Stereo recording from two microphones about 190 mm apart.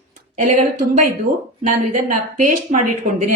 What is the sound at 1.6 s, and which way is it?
A woman's voice, 40° right (ahead or behind).